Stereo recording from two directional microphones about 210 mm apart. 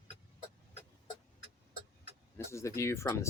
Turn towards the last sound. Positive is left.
turn(degrees=15)  # may be behind; listen again after turning